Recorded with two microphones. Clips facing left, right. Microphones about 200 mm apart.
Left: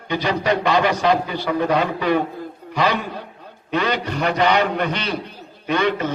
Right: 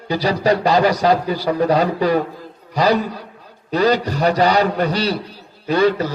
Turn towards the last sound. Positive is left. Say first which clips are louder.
# right 4 dB
turn(degrees=-35)  # may be behind; listen again after turning